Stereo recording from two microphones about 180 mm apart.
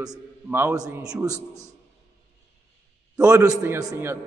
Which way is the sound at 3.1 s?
20° right (ahead or behind).